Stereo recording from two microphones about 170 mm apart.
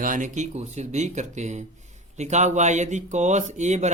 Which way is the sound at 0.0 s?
50° right (ahead or behind).